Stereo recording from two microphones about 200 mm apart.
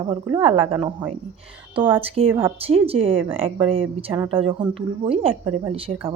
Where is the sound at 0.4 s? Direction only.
25° right (ahead or behind).